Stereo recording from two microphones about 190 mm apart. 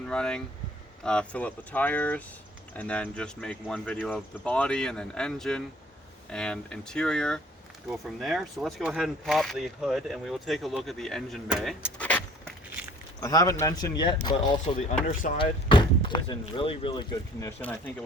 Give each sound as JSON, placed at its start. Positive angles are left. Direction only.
{"t": 0.1, "sound": "speech", "side_deg": 5}
{"t": 13.1, "sound": "speech", "side_deg": 20}
{"t": 17.6, "sound": "speech", "side_deg": 10}